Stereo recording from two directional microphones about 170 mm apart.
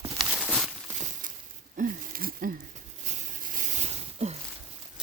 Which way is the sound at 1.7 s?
55° right (ahead or behind).